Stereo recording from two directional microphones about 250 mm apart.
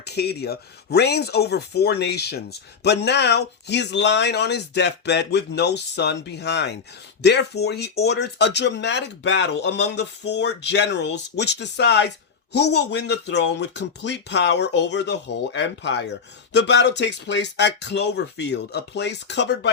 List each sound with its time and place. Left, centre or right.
0.0 s speech: left